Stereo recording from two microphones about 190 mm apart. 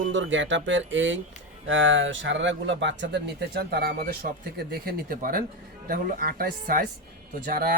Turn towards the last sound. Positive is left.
turn(degrees=-45)  # may be behind; listen again after turning